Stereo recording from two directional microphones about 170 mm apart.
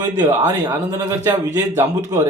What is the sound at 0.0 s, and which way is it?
Speech, 25° right (ahead or behind).